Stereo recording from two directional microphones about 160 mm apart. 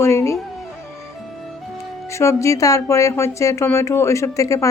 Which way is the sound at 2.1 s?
15° left (ahead or behind).